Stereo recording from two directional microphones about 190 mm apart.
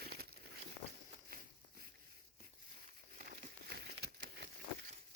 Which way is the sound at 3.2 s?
50° right (ahead or behind).